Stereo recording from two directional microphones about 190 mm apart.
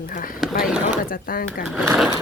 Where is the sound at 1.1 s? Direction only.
50° left (ahead or behind).